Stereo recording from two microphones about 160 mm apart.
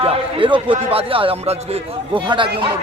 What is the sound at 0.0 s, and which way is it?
A man's voice, 35° right (ahead or behind).